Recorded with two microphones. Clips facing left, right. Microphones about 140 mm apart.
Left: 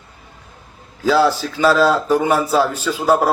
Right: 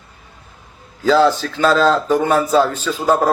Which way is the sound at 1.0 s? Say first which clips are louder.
Right 2 dB; 10° left (ahead or behind).